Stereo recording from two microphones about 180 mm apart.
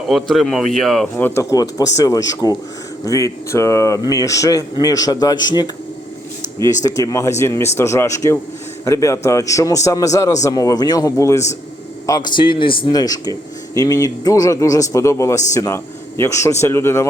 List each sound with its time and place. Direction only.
0.1 s speech: centre (ahead or behind)
1.1 s a man's voice: 15° left (ahead or behind)
6.8 s a man's voice: 20° left (ahead or behind)